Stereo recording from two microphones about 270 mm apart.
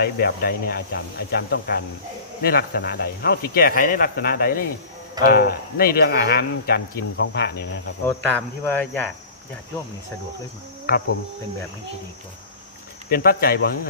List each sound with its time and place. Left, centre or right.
0.0 s speech: left
8.0 s cricket: centre
10.9 s speech: left
13.1 s speech: left